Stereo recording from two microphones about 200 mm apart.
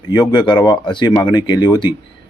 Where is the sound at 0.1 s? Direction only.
20° left (ahead or behind).